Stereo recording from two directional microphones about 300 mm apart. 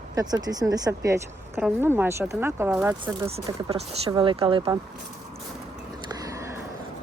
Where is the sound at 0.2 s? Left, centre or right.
Centre.